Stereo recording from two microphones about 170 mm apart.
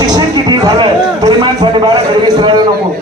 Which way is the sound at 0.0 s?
25° right (ahead or behind).